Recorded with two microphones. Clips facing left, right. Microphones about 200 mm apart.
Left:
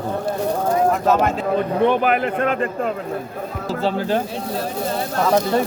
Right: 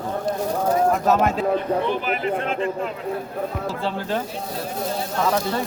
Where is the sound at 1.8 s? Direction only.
60° left (ahead or behind).